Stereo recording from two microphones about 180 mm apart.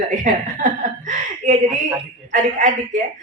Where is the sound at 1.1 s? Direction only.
45° right (ahead or behind).